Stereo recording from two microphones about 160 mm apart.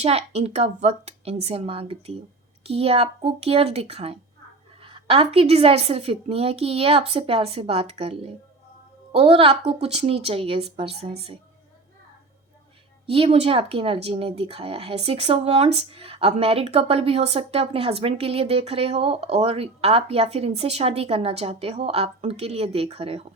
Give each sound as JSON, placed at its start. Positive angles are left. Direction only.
{"t": 0.0, "sound": "speech", "side_deg": -40}
{"t": 13.1, "sound": "speech", "side_deg": -40}